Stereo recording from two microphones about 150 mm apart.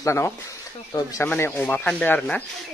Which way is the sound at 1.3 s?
10° left (ahead or behind).